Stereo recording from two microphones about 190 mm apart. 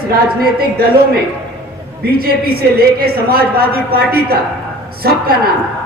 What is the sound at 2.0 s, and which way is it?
A woman's voice, 55° right (ahead or behind).